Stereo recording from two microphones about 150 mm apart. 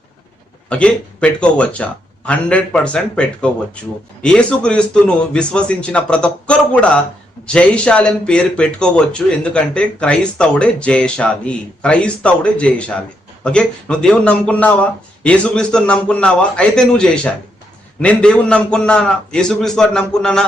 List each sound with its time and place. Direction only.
0.7 s a man's voice: 5° left (ahead or behind)